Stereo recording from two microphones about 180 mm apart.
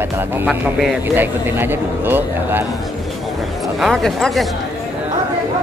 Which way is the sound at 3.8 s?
Centre (ahead or behind).